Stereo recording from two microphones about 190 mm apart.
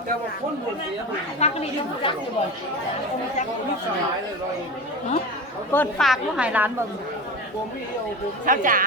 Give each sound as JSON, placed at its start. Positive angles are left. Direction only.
{"t": 1.4, "sound": "speech", "side_deg": 30}
{"t": 5.7, "sound": "a woman's voice", "side_deg": 5}
{"t": 8.4, "sound": "speech", "side_deg": -45}